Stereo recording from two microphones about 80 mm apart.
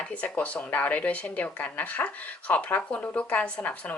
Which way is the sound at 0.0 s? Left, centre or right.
Centre.